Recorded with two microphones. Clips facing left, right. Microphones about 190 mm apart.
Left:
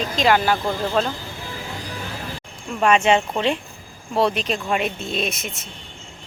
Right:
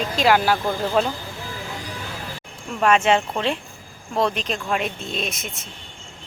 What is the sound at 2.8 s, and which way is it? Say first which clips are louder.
Speech: left 1 dB; centre (ahead or behind).